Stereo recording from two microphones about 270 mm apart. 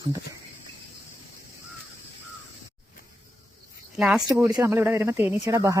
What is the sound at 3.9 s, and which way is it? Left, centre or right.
Speech, centre.